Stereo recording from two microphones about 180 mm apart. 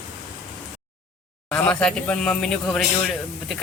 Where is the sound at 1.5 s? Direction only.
10° left (ahead or behind).